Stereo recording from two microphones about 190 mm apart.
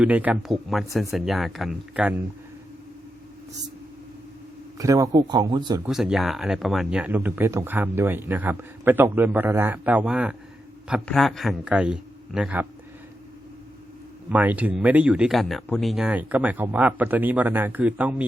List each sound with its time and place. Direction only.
0.0 s a man's voice: 10° right (ahead or behind)
4.8 s speech: 15° right (ahead or behind)
5.8 s a man's voice: 5° right (ahead or behind)
14.3 s speech: 10° right (ahead or behind)